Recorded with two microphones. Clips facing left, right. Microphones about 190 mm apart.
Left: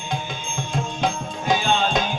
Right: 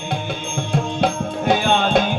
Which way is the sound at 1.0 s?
60° right (ahead or behind).